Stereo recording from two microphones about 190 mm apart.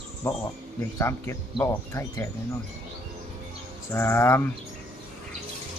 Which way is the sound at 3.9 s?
15° left (ahead or behind).